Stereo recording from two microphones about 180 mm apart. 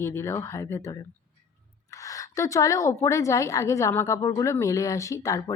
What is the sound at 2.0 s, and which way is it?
Speech, 20° left (ahead or behind).